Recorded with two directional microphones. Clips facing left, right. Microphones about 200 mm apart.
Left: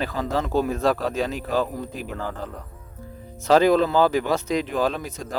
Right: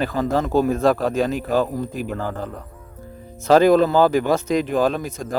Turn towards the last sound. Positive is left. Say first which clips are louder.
# right 4 dB
turn(degrees=-50)  # may be behind; listen again after turning